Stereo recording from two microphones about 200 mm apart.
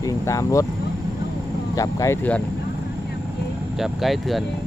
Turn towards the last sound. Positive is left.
turn(degrees=0)  # may be behind; listen again after turning